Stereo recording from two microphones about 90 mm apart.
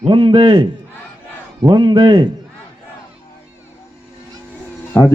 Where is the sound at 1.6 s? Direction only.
55° right (ahead or behind).